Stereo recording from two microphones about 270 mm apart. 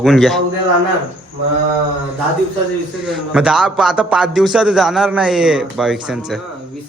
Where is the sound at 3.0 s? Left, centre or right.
Centre.